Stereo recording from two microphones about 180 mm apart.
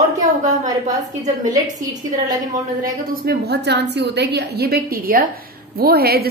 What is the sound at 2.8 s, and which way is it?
A woman's voice, 55° right (ahead or behind).